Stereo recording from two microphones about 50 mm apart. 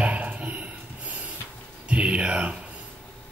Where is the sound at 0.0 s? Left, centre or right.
Right.